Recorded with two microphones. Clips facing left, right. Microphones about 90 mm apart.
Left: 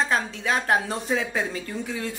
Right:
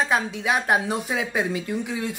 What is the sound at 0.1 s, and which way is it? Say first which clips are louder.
Speech: right 2 dB; 15° right (ahead or behind).